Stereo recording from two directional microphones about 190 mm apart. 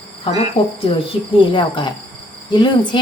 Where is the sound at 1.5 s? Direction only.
25° left (ahead or behind).